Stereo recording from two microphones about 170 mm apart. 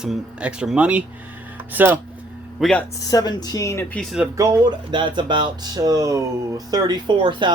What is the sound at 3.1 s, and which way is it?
Speech, 20° left (ahead or behind).